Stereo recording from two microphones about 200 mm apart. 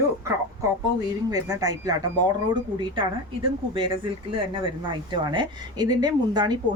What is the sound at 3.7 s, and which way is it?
Speech, 25° right (ahead or behind).